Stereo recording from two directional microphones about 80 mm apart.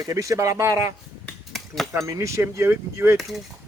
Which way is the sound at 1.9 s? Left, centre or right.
Right.